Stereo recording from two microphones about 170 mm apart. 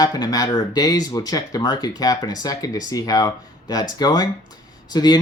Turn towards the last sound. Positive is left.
turn(degrees=25)  # may be behind; listen again after turning